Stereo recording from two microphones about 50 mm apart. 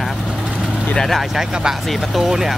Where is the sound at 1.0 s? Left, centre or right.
Centre.